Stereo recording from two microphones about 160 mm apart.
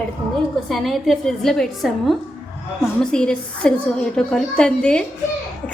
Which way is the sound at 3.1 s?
5° left (ahead or behind).